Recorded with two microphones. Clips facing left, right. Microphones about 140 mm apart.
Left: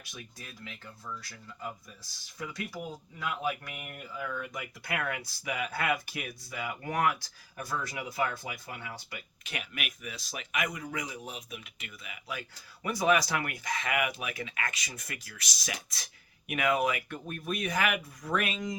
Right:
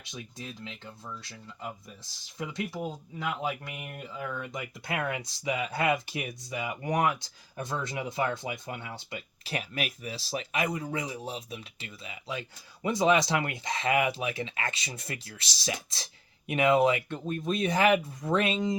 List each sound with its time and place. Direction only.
0.0 s speech: 25° right (ahead or behind)